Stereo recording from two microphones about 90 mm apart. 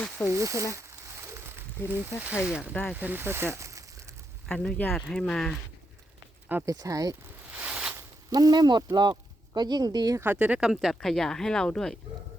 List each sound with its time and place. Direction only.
0.3 s a sound: 35° right (ahead or behind)
1.9 s speech: 25° right (ahead or behind)
4.4 s speech: 10° left (ahead or behind)
6.7 s speech: 40° right (ahead or behind)
7.5 s a sound: 15° right (ahead or behind)
8.3 s speech: 50° right (ahead or behind)
10.2 s speech: 20° right (ahead or behind)
10.6 s speech: 5° right (ahead or behind)